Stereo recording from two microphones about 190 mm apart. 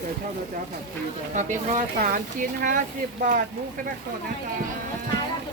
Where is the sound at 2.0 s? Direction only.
45° right (ahead or behind).